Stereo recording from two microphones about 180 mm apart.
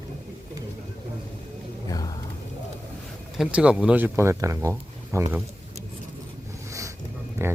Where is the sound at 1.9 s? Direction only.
20° left (ahead or behind).